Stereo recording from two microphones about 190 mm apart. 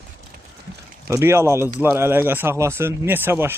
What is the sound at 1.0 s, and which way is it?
Speech, 15° right (ahead or behind).